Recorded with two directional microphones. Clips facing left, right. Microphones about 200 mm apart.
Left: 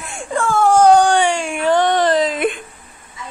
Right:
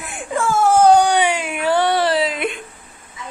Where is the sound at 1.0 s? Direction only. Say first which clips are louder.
Left 2 dB; 45° left (ahead or behind).